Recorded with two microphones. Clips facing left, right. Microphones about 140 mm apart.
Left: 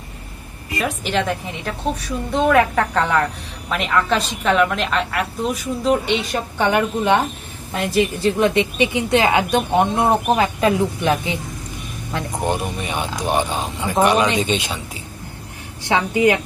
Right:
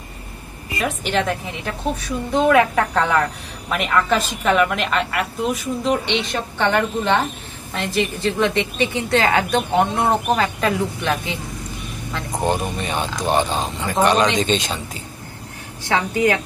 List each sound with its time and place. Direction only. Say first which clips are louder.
0.7 s a woman's voice: even; centre (ahead or behind); by 11.3 s 15° left (ahead or behind)
12.3 s speech: right 2 dB; 15° right (ahead or behind)
12.5 s a woman's voice: right 1 dB; 10° left (ahead or behind)
15.9 s a woman's voice: left 2 dB; 20° left (ahead or behind)